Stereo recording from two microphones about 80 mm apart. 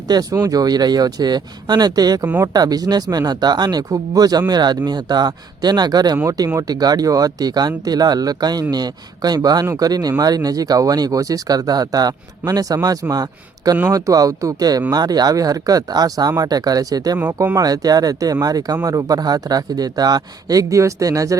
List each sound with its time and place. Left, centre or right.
0.1 s speech: right